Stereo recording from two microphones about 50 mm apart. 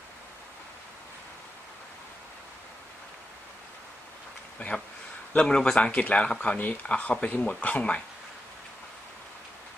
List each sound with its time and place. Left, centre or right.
4.6 s speech: left